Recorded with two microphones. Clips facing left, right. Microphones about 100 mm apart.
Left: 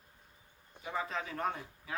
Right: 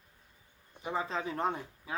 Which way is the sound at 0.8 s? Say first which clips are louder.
Right 3 dB; 25° right (ahead or behind).